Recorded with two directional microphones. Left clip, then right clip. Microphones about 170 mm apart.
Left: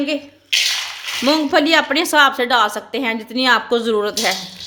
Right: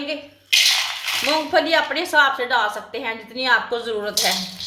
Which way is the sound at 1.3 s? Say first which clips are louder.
Left 4 dB; 80° left.